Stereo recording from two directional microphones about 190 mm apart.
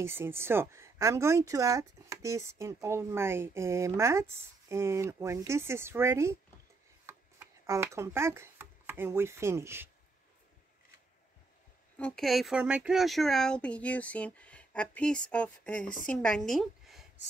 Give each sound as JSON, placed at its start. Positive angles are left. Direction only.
{"t": 0.0, "sound": "speech", "side_deg": -10}
{"t": 12.0, "sound": "speech", "side_deg": 0}
{"t": 15.8, "sound": "a woman's voice", "side_deg": 45}
{"t": 16.1, "sound": "a woman's voice", "side_deg": 5}